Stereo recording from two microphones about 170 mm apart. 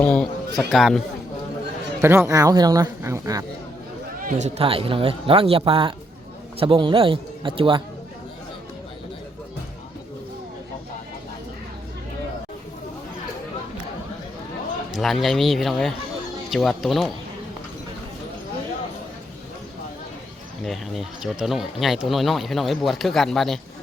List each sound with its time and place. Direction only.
0.0 s a man's voice: 5° left (ahead or behind)
2.0 s speech: 15° right (ahead or behind)
4.2 s speech: 50° right (ahead or behind); by 7.8 s 30° right (ahead or behind)
14.9 s speech: centre (ahead or behind)
20.7 s speech: centre (ahead or behind)